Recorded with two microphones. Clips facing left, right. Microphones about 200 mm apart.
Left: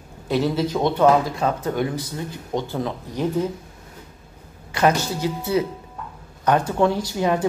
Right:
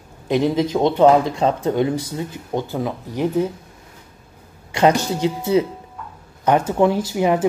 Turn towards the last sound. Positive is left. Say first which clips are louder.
# right 3 dB
turn(degrees=-15)  # may be behind; listen again after turning